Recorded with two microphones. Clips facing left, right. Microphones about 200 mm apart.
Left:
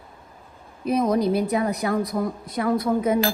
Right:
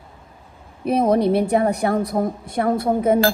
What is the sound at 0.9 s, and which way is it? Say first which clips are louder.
A woman's voice: right 3 dB; 60° right (ahead or behind).